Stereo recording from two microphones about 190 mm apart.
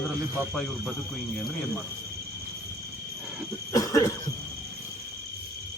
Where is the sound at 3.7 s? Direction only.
15° left (ahead or behind).